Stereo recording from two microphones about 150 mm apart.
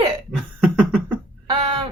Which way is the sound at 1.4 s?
30° right (ahead or behind).